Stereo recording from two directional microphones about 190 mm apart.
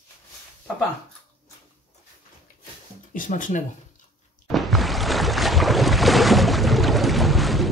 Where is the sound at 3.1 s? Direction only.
45° left (ahead or behind).